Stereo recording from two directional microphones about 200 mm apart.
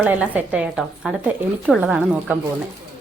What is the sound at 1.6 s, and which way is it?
Speech, 5° right (ahead or behind).